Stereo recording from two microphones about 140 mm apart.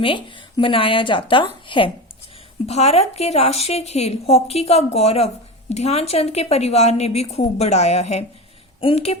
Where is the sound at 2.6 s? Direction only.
45° left (ahead or behind).